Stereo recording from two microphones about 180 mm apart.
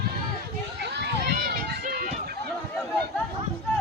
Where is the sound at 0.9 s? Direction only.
65° right (ahead or behind).